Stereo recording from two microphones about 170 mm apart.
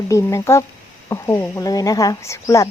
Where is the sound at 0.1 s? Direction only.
15° left (ahead or behind).